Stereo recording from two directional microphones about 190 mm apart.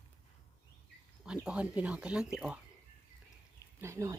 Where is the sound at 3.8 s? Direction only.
15° right (ahead or behind).